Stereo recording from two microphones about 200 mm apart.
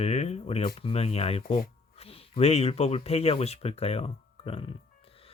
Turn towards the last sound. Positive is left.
turn(degrees=25)  # may be behind; listen again after turning